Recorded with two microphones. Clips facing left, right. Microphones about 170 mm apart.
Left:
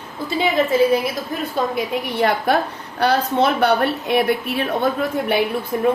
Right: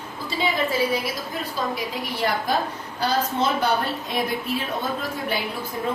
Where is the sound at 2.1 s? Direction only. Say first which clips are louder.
Left 6 dB; 65° left (ahead or behind).